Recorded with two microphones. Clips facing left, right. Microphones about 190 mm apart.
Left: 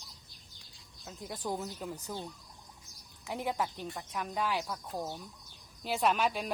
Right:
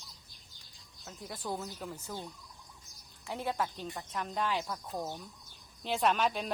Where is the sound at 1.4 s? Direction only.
15° left (ahead or behind).